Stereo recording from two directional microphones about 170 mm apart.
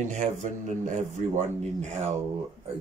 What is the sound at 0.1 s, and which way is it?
Speech, 45° right (ahead or behind).